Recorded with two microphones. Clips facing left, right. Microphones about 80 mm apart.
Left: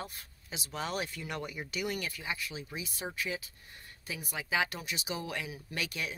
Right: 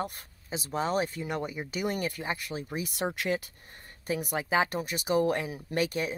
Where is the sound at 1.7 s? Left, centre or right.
Right.